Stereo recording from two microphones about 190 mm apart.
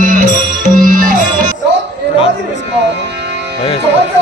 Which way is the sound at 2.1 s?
30° left (ahead or behind).